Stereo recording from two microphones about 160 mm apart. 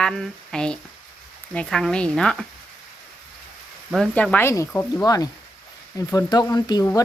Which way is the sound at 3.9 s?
5° left (ahead or behind).